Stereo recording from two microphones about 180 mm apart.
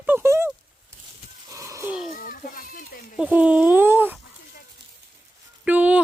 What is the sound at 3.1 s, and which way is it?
Speech, 5° right (ahead or behind).